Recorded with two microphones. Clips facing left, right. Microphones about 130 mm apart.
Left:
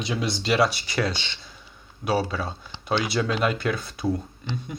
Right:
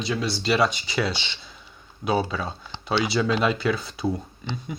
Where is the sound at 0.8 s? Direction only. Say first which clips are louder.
Even; centre (ahead or behind).